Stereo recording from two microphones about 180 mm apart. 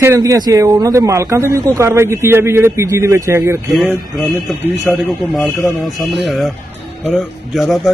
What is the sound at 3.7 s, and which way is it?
A man's voice, centre (ahead or behind).